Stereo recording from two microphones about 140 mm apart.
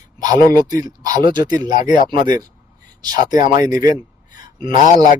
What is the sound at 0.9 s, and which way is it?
Speech, 25° right (ahead or behind).